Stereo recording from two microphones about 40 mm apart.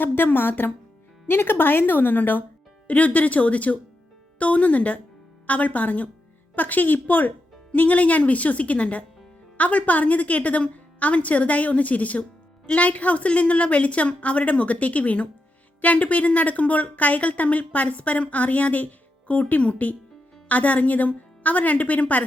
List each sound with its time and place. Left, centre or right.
0.0 s a woman's voice: left
2.8 s a woman's voice: left
7.7 s a woman's voice: left